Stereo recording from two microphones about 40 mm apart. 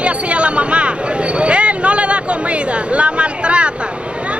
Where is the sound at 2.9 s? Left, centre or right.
Right.